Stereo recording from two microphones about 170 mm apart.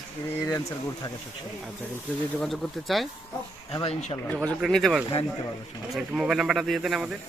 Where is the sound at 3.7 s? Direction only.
35° left (ahead or behind).